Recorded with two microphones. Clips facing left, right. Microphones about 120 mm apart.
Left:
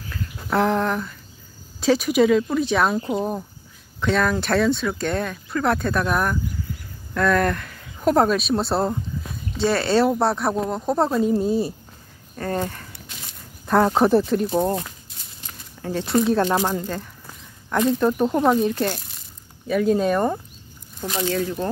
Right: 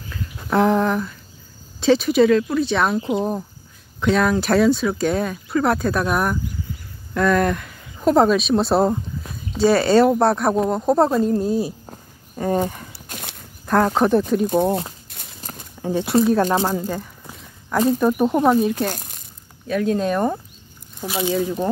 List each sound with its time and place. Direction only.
0.1 s a sound: centre (ahead or behind)
1.8 s speech: 5° left (ahead or behind)
3.1 s speech: centre (ahead or behind)
12.4 s speech: 15° right (ahead or behind)
13.1 s a sound: 65° right (ahead or behind)
13.7 s speech: centre (ahead or behind)
15.1 s walk: 65° right (ahead or behind)
15.8 s speech: 15° right (ahead or behind)
16.1 s speech: 5° right (ahead or behind)
21.0 s speech: 10° right (ahead or behind)